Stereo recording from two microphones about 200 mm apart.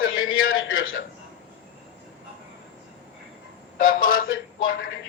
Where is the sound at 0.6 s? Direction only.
90° left.